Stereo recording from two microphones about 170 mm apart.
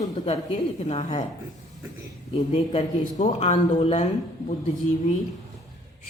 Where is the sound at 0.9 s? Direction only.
40° left (ahead or behind).